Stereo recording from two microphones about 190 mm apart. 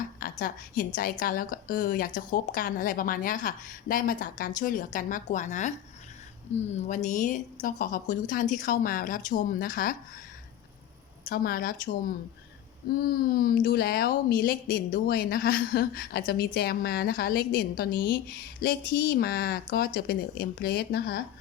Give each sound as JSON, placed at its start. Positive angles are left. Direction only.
{"t": 0.2, "sound": "a woman's voice", "side_deg": 45}
{"t": 11.3, "sound": "speech", "side_deg": 50}